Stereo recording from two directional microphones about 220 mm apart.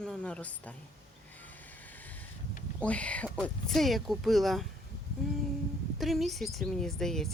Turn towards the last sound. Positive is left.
turn(degrees=0)  # may be behind; listen again after turning